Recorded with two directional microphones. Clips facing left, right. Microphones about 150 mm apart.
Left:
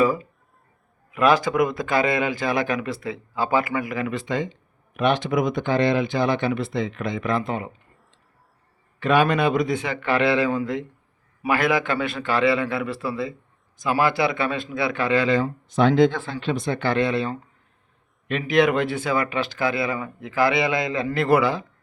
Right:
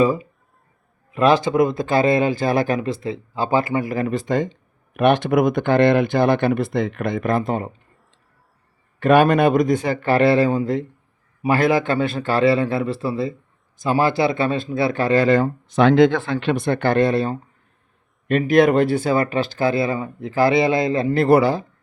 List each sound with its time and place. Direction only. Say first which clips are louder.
0.0 s speech: right 3 dB; 25° right (ahead or behind); by 7.7 s 40° right (ahead or behind)
9.0 s speech: right 5 dB; 50° right (ahead or behind)
15.7 s speech: right 4 dB; 75° right (ahead or behind); by 21.6 s 35° right (ahead or behind)